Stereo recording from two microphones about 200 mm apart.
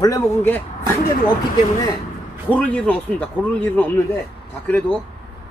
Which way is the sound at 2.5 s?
5° left (ahead or behind).